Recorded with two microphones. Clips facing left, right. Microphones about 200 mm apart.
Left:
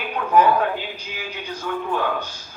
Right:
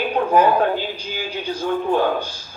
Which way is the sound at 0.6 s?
30° right (ahead or behind).